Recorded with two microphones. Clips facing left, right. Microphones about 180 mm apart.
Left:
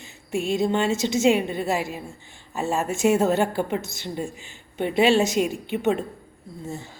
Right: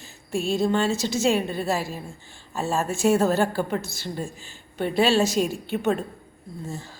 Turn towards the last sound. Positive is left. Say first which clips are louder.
# left 1 dB
turn(degrees=20)  # may be behind; listen again after turning